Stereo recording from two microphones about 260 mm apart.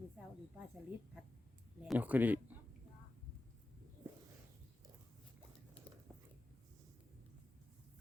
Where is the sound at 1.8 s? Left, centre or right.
Centre.